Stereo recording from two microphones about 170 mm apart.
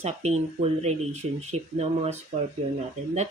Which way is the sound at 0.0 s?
40° right (ahead or behind).